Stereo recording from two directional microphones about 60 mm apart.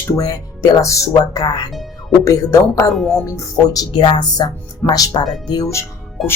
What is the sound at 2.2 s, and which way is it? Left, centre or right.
Speech, left.